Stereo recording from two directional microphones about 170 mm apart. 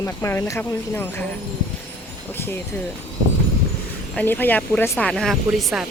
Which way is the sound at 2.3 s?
15° left (ahead or behind).